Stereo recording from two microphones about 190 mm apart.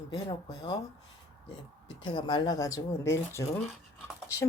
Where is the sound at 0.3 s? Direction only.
30° left (ahead or behind).